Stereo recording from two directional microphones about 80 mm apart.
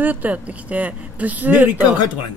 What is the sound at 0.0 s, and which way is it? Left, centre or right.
Speech, right.